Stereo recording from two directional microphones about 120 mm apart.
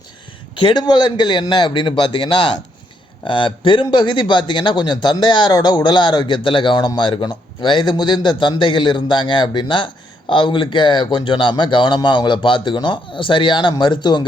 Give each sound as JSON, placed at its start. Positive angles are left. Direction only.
{"t": 0.5, "sound": "speech", "side_deg": 40}